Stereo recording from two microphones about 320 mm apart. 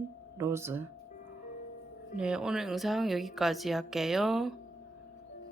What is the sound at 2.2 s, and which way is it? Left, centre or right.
Speech, centre.